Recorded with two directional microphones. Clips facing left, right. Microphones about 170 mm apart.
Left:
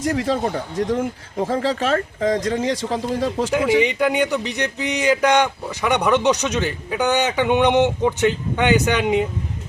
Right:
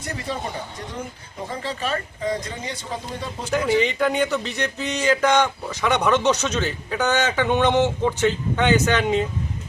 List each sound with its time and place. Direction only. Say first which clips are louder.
0.0 s speech: left 9 dB; 90° left
3.8 s speech: left 2 dB; 15° left (ahead or behind)